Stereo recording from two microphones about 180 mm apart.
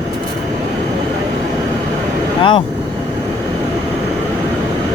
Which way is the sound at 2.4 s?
30° left (ahead or behind).